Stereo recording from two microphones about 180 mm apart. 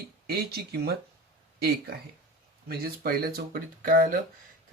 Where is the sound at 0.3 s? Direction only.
60° right (ahead or behind).